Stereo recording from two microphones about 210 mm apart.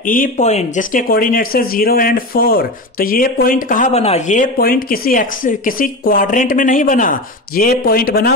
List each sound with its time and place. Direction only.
0.0 s speech: 40° left (ahead or behind)